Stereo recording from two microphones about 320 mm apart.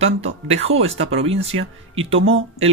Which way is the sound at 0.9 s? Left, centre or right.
Right.